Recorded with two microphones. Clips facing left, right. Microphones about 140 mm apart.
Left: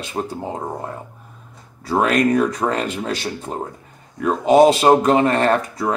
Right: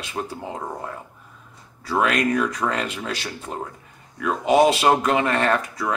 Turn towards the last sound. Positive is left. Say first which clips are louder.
# left 4 dB
turn(degrees=35)  # may be behind; listen again after turning